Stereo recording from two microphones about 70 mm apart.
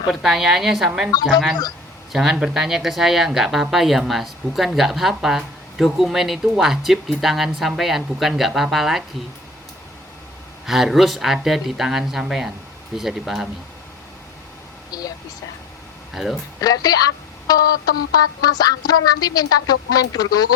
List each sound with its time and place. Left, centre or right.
0.1 s a woman's voice: centre
10.7 s a woman's voice: centre
14.8 s a sound: left
16.1 s a woman's voice: centre
16.6 s speech: left